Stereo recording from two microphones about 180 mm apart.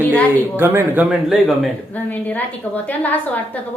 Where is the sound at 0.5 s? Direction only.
10° right (ahead or behind).